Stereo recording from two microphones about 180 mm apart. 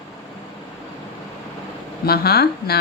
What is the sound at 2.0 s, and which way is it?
Speech, 60° left (ahead or behind).